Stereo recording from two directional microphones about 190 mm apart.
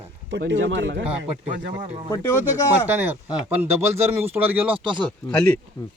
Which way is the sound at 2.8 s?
10° right (ahead or behind).